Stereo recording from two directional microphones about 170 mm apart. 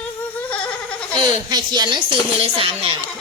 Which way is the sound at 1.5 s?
25° right (ahead or behind).